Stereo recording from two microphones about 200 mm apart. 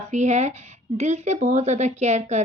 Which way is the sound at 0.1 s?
35° right (ahead or behind).